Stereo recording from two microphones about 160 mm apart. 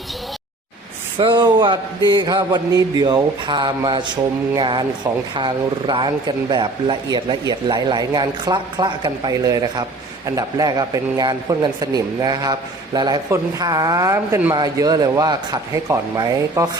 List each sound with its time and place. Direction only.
1.2 s speech: 30° right (ahead or behind)